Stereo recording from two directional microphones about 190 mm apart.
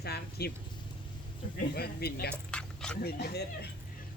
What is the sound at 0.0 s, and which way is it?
Speech, 55° left (ahead or behind).